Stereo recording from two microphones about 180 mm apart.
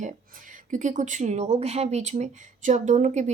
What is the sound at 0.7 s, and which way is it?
A woman's voice, 45° right (ahead or behind).